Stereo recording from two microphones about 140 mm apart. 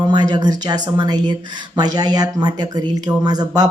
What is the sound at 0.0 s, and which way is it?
Speech, 30° right (ahead or behind).